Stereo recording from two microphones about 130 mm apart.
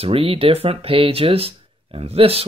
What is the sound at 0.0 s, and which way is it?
Speech, 45° right (ahead or behind).